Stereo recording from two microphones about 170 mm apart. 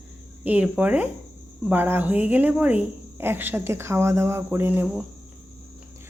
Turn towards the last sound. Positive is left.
turn(degrees=-15)  # may be behind; listen again after turning